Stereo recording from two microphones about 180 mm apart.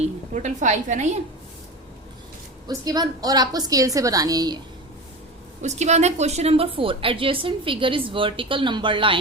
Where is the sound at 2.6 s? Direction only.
20° right (ahead or behind).